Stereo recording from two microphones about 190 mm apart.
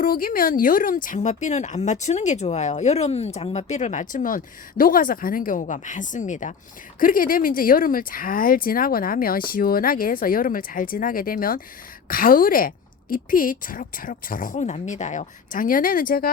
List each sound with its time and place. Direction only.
0.0 s a woman's voice: 50° left (ahead or behind)